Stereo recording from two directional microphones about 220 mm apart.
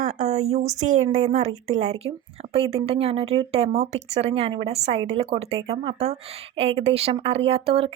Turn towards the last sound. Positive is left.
turn(degrees=-25)  # may be behind; listen again after turning